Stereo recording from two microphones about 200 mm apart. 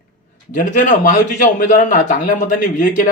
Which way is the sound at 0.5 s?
40° left (ahead or behind).